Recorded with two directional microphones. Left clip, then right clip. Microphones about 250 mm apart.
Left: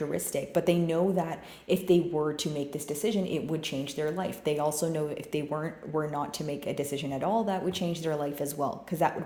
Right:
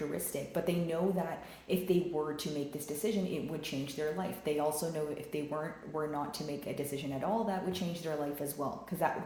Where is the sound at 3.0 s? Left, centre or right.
Left.